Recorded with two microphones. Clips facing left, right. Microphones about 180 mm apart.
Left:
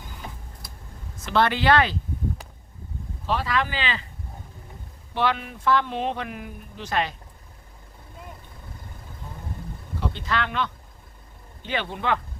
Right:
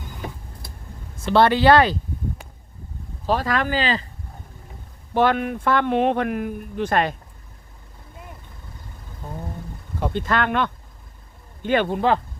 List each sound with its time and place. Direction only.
1.2 s speech: 35° right (ahead or behind)
3.2 s speech: 45° right (ahead or behind)
5.1 s speech: 50° right (ahead or behind)
10.0 s speech: 50° right (ahead or behind)